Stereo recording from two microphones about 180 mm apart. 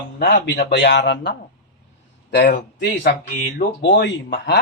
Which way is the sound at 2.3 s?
80° left.